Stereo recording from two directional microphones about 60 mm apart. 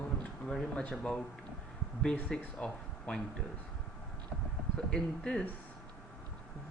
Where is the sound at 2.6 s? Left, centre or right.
Centre.